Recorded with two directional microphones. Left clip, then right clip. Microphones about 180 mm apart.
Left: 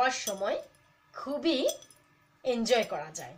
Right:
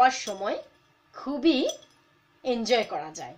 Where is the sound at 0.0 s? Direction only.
35° right (ahead or behind).